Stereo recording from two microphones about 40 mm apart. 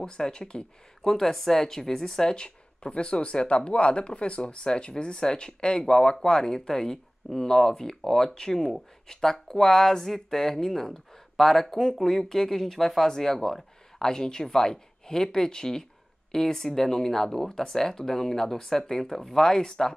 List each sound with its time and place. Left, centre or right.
0.0 s speech: left
1.0 s speech: centre